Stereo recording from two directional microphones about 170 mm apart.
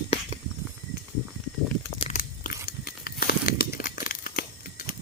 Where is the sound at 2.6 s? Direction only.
65° left (ahead or behind).